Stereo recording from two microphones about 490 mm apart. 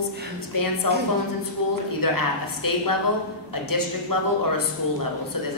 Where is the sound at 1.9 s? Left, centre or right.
Left.